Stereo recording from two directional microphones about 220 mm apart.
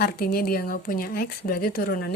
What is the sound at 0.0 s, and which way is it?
Speech, 45° left (ahead or behind).